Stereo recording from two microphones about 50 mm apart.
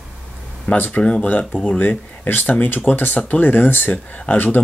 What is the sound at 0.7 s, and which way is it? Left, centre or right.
Speech, left.